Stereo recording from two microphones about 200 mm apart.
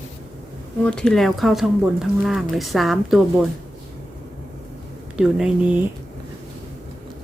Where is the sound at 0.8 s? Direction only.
5° left (ahead or behind).